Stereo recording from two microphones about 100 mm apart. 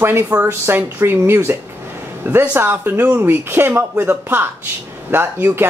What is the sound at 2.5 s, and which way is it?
Speech, 20° right (ahead or behind).